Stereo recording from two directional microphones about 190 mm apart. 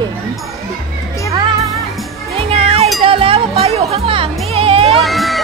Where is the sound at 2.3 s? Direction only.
30° right (ahead or behind).